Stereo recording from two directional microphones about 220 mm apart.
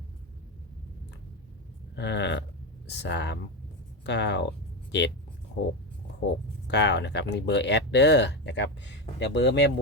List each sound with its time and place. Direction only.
2.0 s speech: 50° left (ahead or behind)
6.7 s speech: 50° left (ahead or behind)